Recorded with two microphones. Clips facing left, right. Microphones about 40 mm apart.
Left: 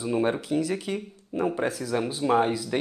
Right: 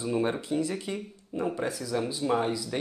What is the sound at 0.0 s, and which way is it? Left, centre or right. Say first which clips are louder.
Speech: left 3 dB; centre.